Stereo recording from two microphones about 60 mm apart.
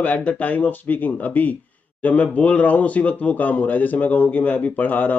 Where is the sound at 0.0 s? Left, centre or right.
Left.